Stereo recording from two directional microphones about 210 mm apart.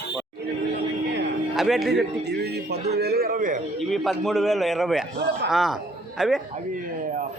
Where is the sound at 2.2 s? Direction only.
50° right (ahead or behind).